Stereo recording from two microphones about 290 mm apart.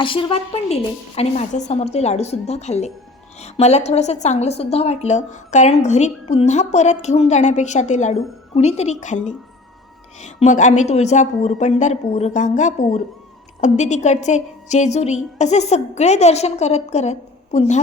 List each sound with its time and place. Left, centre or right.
0.0 s a woman's voice: centre